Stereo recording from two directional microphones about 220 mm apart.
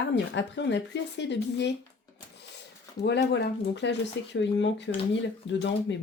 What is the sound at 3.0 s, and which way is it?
Speech, 50° left (ahead or behind).